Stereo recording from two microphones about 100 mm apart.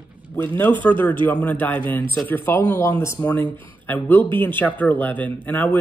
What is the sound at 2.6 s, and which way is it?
Speech, 35° left (ahead or behind).